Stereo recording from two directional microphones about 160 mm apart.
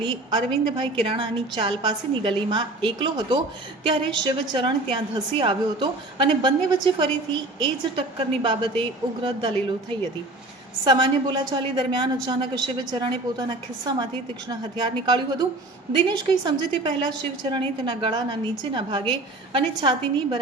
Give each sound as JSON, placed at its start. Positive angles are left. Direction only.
{"t": 0.0, "sound": "a woman's voice", "side_deg": -30}